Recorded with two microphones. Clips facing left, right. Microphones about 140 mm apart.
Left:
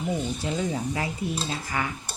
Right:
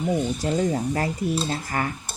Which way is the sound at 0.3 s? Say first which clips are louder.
Right 5 dB; 45° right (ahead or behind).